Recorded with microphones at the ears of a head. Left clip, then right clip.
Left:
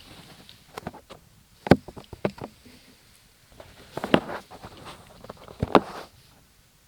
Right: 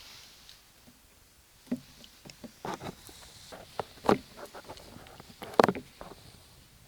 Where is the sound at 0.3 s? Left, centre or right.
Left.